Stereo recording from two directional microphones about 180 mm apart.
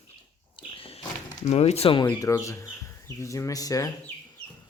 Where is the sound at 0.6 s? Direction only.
30° left (ahead or behind).